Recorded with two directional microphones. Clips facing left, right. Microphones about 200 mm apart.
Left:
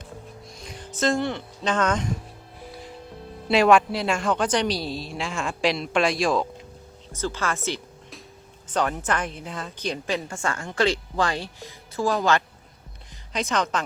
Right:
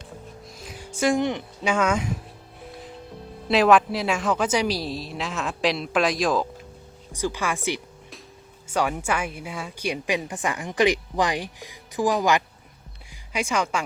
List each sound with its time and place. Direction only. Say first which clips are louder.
0.4 s speech: even; 5° right (ahead or behind)
2.6 s music: even; centre (ahead or behind)
3.5 s a woman's voice: even; centre (ahead or behind)
7.1 s speech: right 1 dB; 15° right (ahead or behind)